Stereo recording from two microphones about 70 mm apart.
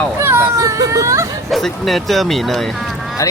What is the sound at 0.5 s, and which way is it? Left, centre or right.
Snicker, right.